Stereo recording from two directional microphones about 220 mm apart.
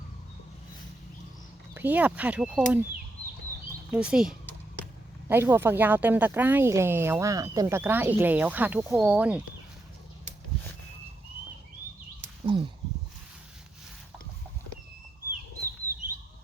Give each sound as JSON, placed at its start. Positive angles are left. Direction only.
{"t": 1.7, "sound": "speech", "side_deg": -10}
{"t": 3.9, "sound": "speech", "side_deg": -5}
{"t": 12.5, "sound": "a sound", "side_deg": -20}